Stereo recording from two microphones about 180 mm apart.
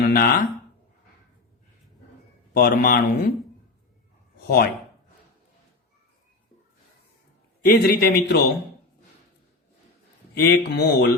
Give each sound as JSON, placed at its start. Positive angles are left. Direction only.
{"t": 0.0, "sound": "speech", "side_deg": 55}
{"t": 2.5, "sound": "speech", "side_deg": 55}
{"t": 4.4, "sound": "speech", "side_deg": 50}
{"t": 7.6, "sound": "speech", "side_deg": 55}
{"t": 10.3, "sound": "speech", "side_deg": 60}